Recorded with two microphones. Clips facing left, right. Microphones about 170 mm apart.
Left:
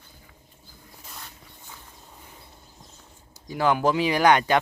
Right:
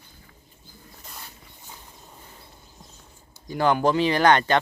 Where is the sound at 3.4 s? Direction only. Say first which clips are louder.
Right 1 dB; 5° left (ahead or behind).